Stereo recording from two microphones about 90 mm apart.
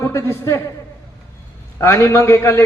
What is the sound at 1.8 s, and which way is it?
Speech, 30° left (ahead or behind).